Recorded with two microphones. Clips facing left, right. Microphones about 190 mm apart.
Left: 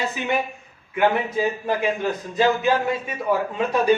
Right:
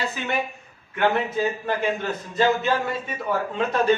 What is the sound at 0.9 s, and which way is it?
A man's voice, 10° left (ahead or behind).